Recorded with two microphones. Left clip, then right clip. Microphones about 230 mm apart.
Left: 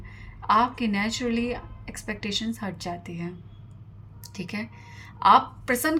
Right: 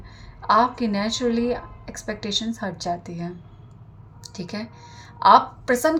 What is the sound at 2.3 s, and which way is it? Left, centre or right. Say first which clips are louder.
Speech: right 5 dB; left.